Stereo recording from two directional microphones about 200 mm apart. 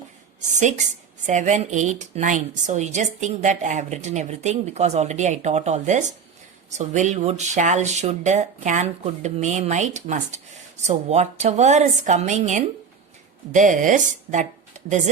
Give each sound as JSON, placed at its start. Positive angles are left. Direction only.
{"t": 0.3, "sound": "speech", "side_deg": -35}